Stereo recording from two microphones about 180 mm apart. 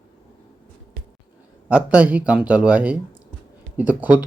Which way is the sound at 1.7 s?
5° right (ahead or behind).